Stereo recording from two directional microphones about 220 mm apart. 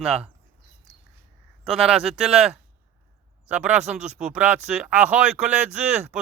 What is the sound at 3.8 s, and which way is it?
Speech, 30° right (ahead or behind).